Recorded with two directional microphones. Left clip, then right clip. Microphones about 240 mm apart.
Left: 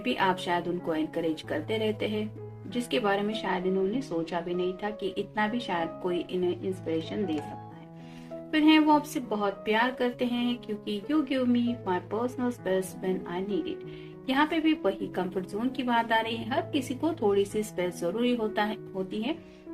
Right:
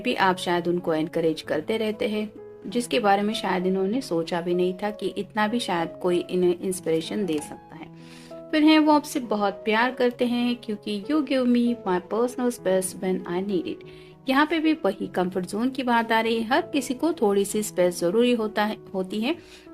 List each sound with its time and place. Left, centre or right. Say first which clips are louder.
0.0 s a woman's voice: right 5 dB; right
8.4 s a woman's voice: right 3 dB; right